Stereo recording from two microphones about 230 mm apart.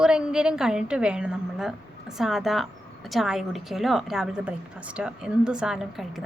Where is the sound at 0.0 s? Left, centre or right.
Centre.